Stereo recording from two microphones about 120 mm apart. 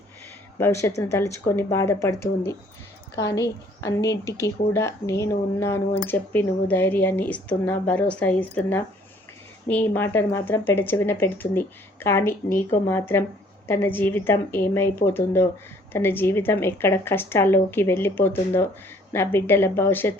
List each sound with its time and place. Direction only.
0.6 s speech: 20° left (ahead or behind)